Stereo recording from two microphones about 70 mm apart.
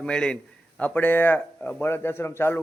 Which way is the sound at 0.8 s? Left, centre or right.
Left.